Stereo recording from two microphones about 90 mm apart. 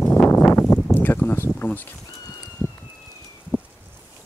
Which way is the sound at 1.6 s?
20° left (ahead or behind).